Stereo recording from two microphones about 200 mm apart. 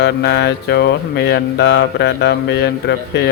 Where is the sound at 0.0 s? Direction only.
55° left (ahead or behind).